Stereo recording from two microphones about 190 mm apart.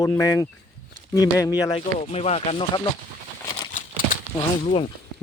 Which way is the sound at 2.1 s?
35° left (ahead or behind).